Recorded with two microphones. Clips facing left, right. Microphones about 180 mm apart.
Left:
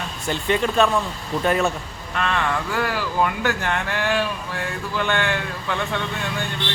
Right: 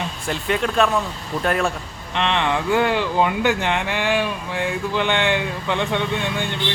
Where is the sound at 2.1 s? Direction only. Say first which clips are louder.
Right 2 dB; 20° right (ahead or behind).